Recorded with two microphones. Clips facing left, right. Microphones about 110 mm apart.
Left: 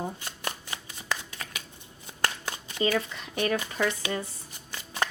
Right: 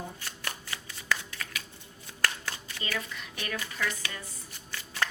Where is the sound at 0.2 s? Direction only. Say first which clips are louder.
Left 3 dB; 20° left (ahead or behind).